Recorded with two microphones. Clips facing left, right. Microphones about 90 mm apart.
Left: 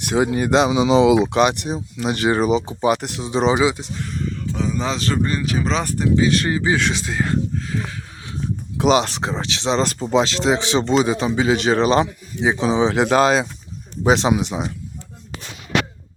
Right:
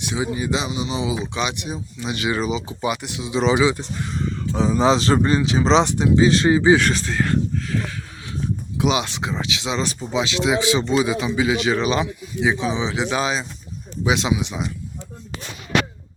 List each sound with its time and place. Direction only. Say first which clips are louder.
0.0 s speech: left 6 dB; 55° left (ahead or behind); by 3.5 s 40° left (ahead or behind)
3.5 s speech: right 1 dB; 25° left (ahead or behind)
4.3 s speech: right 4 dB; 30° right (ahead or behind)
6.7 s speech: right 1 dB; centre (ahead or behind)
7.0 s speech: even; 15° left (ahead or behind)
8.8 s speech: left 5 dB; 40° left (ahead or behind)